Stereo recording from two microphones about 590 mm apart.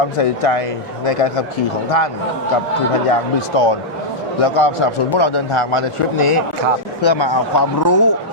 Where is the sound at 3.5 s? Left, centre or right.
Left.